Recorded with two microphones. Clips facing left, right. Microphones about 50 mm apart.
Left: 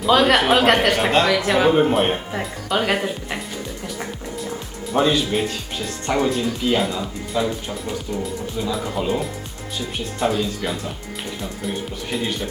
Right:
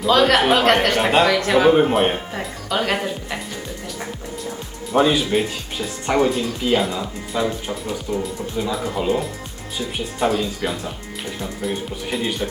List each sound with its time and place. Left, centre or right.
0.1 s speech: centre
4.9 s speech: centre